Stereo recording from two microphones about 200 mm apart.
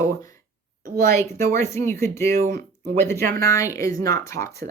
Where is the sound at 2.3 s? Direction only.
45° right (ahead or behind).